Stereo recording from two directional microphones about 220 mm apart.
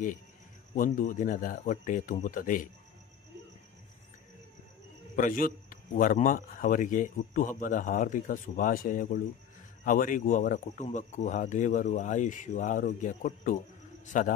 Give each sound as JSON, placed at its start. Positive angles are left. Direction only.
{"t": 0.7, "sound": "a man's voice", "side_deg": 35}
{"t": 5.1, "sound": "a man's voice", "side_deg": 35}